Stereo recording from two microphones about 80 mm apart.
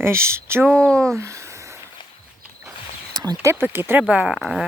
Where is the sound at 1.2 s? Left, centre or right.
Right.